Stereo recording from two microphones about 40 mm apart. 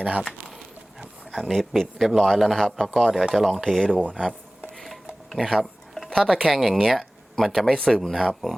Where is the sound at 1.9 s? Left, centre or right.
Centre.